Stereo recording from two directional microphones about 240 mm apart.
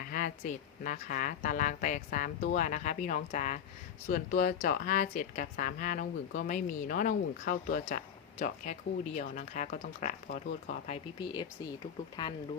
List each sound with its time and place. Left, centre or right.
0.1 s a woman's voice: left; by 11.7 s centre